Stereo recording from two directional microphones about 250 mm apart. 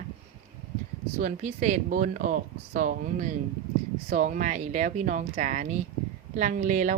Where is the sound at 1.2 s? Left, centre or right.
Right.